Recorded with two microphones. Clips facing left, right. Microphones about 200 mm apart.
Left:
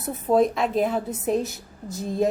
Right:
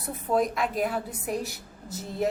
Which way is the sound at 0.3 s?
25° left (ahead or behind).